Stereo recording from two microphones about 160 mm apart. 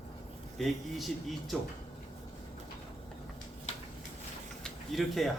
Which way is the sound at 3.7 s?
45° left (ahead or behind).